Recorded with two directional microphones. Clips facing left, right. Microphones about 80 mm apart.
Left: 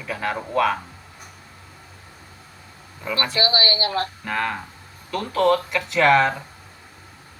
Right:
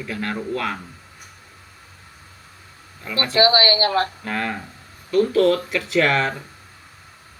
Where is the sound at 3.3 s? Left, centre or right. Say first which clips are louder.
Right 9 dB; right.